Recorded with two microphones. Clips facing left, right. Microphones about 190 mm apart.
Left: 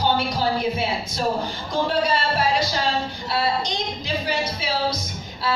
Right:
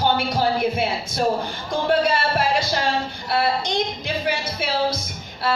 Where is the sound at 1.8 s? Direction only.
55° right (ahead or behind).